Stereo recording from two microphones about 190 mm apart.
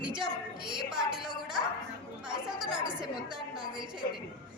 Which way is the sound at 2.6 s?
25° right (ahead or behind).